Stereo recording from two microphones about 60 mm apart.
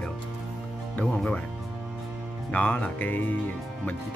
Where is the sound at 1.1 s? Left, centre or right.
Centre.